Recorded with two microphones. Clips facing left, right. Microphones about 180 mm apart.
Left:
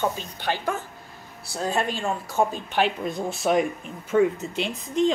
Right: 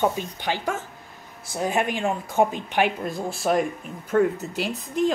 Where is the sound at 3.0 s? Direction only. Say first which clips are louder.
Left 1 dB; centre (ahead or behind).